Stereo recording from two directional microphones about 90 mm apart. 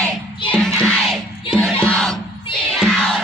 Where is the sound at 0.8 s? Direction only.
10° left (ahead or behind).